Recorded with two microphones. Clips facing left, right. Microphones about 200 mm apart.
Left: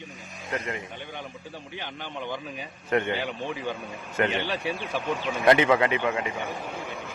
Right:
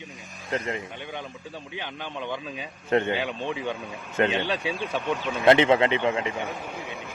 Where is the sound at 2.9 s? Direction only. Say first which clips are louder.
Right 2 dB; 25° right (ahead or behind).